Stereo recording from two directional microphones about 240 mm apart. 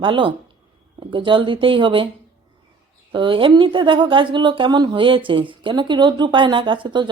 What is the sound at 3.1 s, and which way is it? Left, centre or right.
Speech, right.